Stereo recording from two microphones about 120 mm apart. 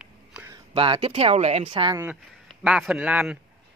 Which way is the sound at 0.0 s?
10° right (ahead or behind).